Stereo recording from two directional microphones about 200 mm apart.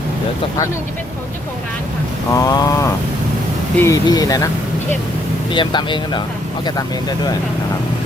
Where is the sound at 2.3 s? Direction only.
15° left (ahead or behind).